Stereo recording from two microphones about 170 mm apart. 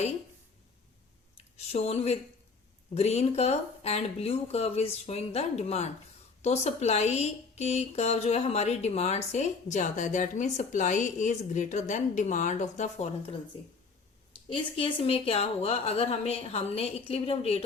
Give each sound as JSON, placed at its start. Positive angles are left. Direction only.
{"t": 1.4, "sound": "a sound", "side_deg": 40}
{"t": 2.9, "sound": "a woman's voice", "side_deg": 40}
{"t": 14.5, "sound": "speech", "side_deg": 30}